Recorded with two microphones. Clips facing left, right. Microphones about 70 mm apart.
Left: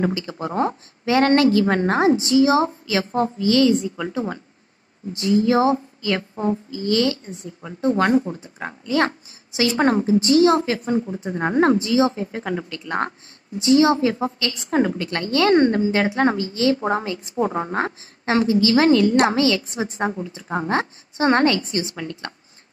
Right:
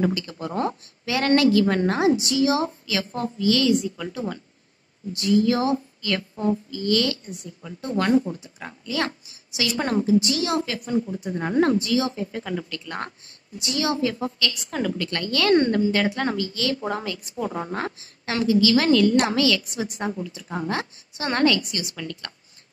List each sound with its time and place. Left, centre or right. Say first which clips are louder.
0.0 s a woman's voice: left 2 dB; left